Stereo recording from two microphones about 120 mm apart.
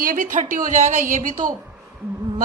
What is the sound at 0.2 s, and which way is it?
Speech, 90° right.